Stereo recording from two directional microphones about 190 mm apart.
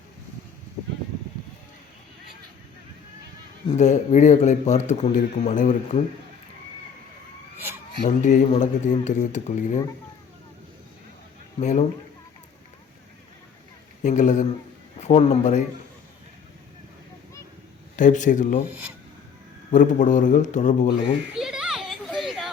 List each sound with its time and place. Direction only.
3.8 s a man's voice: 40° left (ahead or behind)
8.0 s a man's voice: 40° left (ahead or behind)
14.0 s a man's voice: 40° left (ahead or behind)
17.9 s a man's voice: 40° left (ahead or behind)
19.7 s a man's voice: 45° left (ahead or behind)
21.3 s children playing: 5° right (ahead or behind)